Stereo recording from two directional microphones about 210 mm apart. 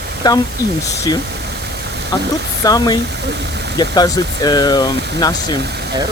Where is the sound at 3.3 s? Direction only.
55° right (ahead or behind).